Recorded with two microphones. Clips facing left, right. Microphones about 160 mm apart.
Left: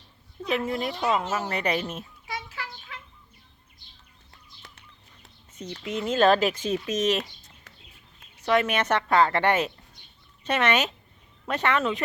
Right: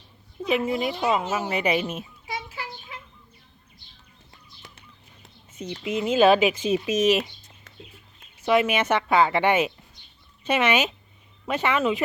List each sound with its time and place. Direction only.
0.4 s speech: centre (ahead or behind)
2.2 s a sound: 25° right (ahead or behind)
5.7 s speech: 10° right (ahead or behind)